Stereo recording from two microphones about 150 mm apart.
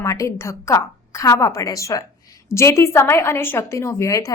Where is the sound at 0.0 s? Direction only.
20° left (ahead or behind).